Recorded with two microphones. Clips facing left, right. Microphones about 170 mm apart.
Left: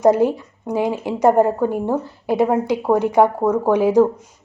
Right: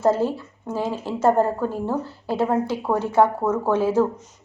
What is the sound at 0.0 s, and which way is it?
Speech, 15° left (ahead or behind).